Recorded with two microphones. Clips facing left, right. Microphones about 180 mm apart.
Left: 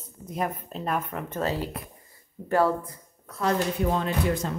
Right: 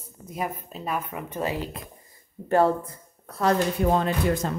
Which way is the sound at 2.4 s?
25° right (ahead or behind).